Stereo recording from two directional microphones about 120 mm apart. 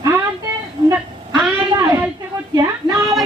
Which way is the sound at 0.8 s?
40° right (ahead or behind).